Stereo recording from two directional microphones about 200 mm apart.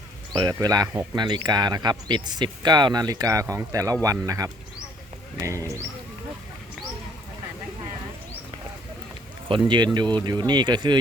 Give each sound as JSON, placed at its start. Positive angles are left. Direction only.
{"t": 0.3, "sound": "speech", "side_deg": -20}
{"t": 9.5, "sound": "speech", "side_deg": -20}